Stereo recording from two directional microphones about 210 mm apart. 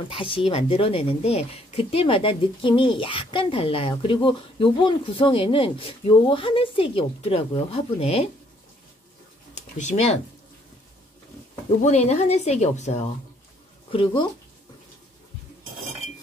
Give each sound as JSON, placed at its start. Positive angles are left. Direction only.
{"t": 0.5, "sound": "speech", "side_deg": 25}
{"t": 9.6, "sound": "speech", "side_deg": 35}
{"t": 11.8, "sound": "a woman's voice", "side_deg": 30}